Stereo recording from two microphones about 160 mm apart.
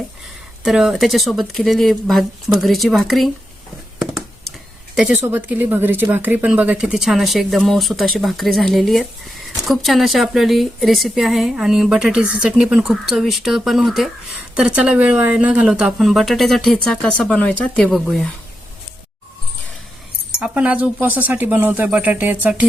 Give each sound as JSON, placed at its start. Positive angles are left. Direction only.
{"t": 0.6, "sound": "speech", "side_deg": 0}
{"t": 4.9, "sound": "speech", "side_deg": -5}
{"t": 20.4, "sound": "speech", "side_deg": -5}